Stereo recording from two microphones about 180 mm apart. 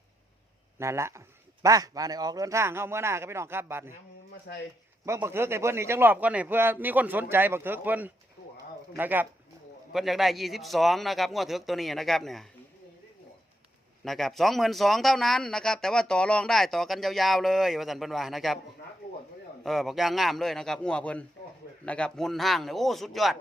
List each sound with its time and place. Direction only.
0.8 s a man's voice: 15° right (ahead or behind)
5.0 s a man's voice: 15° right (ahead or behind); by 12.5 s centre (ahead or behind)
14.0 s speech: centre (ahead or behind)
19.6 s speech: centre (ahead or behind)